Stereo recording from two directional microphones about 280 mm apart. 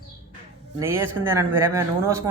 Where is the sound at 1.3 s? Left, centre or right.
Centre.